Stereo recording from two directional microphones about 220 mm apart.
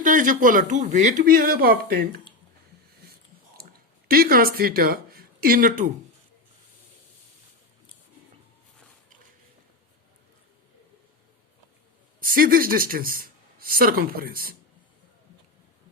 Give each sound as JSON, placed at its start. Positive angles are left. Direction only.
{"t": 0.0, "sound": "speech", "side_deg": -35}
{"t": 3.6, "sound": "speech", "side_deg": -45}
{"t": 12.2, "sound": "speech", "side_deg": -40}